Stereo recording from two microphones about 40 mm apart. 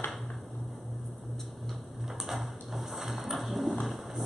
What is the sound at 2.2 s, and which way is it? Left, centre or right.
Music, centre.